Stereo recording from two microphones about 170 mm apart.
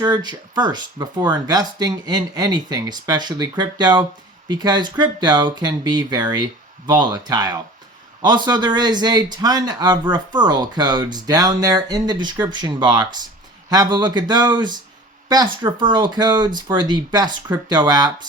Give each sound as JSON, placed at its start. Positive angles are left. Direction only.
{"t": 0.0, "sound": "speech", "side_deg": -25}